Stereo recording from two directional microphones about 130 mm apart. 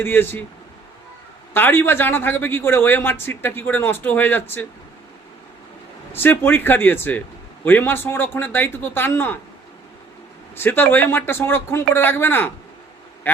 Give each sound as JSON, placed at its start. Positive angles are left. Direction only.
{"t": 0.0, "sound": "a man's voice", "side_deg": 15}
{"t": 1.5, "sound": "a man's voice", "side_deg": 15}
{"t": 6.1, "sound": "a man's voice", "side_deg": 15}
{"t": 10.5, "sound": "a man's voice", "side_deg": 15}